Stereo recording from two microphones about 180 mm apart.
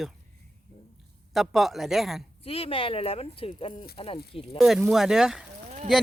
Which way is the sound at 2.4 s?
30° left (ahead or behind).